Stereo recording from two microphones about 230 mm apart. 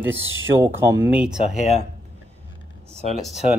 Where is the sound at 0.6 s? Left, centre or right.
Centre.